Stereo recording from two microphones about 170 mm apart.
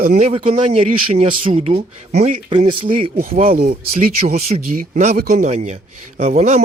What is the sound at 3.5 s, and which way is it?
Speech, 60° right (ahead or behind).